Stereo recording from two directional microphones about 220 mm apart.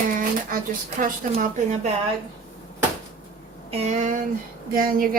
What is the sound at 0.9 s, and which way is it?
Speech, 35° right (ahead or behind).